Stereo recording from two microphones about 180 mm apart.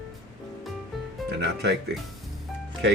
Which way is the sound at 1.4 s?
70° right (ahead or behind).